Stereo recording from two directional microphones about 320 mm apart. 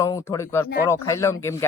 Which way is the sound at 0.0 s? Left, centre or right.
Centre.